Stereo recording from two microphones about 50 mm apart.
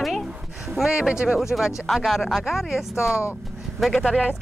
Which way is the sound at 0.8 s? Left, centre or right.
Centre.